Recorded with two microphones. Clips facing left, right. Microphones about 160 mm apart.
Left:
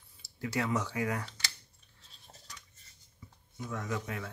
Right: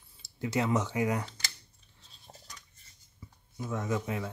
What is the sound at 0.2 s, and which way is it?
Speech, 25° right (ahead or behind).